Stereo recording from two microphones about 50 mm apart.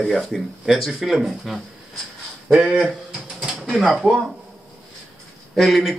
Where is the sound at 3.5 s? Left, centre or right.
Centre.